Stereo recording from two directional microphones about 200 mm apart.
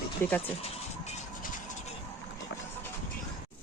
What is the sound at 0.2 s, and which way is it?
Speech, 10° left (ahead or behind).